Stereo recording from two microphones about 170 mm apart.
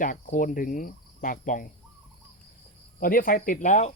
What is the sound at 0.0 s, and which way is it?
Cricket, 50° left (ahead or behind).